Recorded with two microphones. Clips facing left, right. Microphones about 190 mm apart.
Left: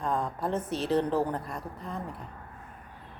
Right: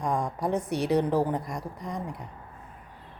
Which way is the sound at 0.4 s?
15° right (ahead or behind).